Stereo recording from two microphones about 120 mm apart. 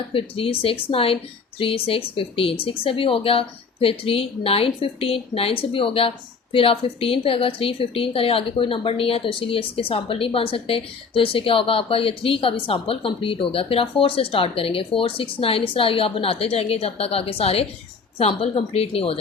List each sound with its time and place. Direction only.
0.1 s a woman's voice: 50° left (ahead or behind)